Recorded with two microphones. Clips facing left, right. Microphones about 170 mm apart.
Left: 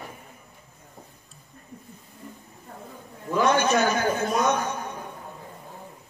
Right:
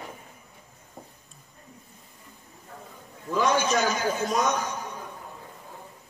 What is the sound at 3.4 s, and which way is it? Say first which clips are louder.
A man's voice: left 3 dB; 60° left (ahead or behind).